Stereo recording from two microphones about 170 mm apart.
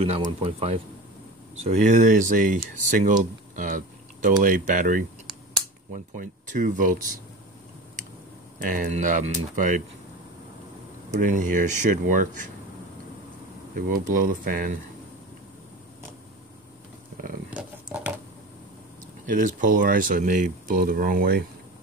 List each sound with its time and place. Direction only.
0.0 s speech: 35° right (ahead or behind)
3.5 s a sound: 50° right (ahead or behind)
4.4 s speech: 50° right (ahead or behind)
8.5 s speech: 55° right (ahead or behind)
11.1 s speech: 50° right (ahead or behind)
13.7 s speech: 55° right (ahead or behind)
17.5 s a sound: 10° right (ahead or behind)
19.2 s speech: 50° right (ahead or behind)